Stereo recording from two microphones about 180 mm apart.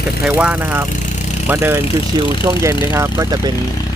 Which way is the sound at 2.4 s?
20° right (ahead or behind).